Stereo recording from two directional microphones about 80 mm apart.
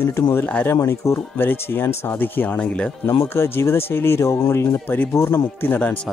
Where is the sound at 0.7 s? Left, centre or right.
Left; by 2.9 s centre.